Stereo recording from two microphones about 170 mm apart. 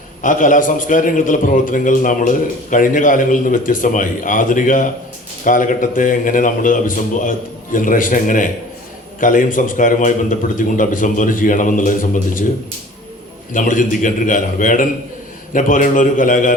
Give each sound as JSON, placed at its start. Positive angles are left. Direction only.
{"t": 0.2, "sound": "a man's voice", "side_deg": 50}
{"t": 13.5, "sound": "a man's voice", "side_deg": 50}